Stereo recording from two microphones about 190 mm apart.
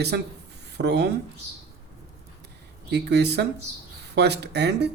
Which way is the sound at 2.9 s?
60° right (ahead or behind).